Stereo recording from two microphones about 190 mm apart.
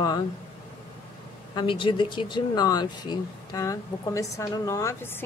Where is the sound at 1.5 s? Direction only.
25° left (ahead or behind).